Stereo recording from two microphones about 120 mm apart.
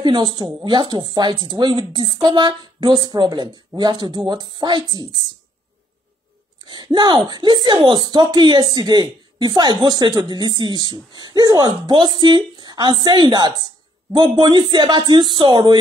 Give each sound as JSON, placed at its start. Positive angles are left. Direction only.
{"t": 0.0, "sound": "speech", "side_deg": -40}
{"t": 6.7, "sound": "speech", "side_deg": -35}